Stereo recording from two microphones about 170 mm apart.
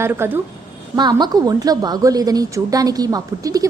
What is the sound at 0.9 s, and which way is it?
A woman's voice, 25° right (ahead or behind).